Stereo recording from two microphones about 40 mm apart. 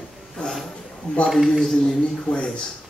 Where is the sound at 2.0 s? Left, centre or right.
Left.